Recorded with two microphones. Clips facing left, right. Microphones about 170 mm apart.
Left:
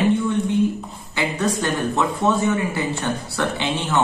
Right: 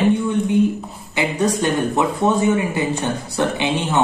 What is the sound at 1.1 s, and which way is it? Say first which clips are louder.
Speech: right 3 dB; 15° right (ahead or behind).